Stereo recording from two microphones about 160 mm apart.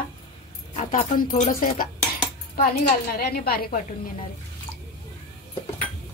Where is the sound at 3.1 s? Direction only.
70° left (ahead or behind).